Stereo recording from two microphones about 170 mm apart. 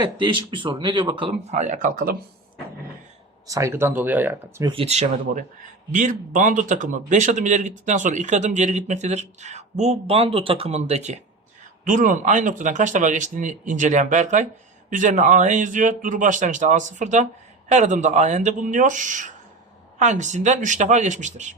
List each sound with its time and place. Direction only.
0.0 s speech: 25° right (ahead or behind)
1.5 s speech: 45° right (ahead or behind)
3.4 s speech: 20° right (ahead or behind)
4.6 s speech: 30° right (ahead or behind)